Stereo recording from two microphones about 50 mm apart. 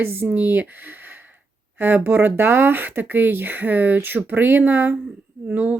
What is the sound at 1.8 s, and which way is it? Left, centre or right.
Speech, right.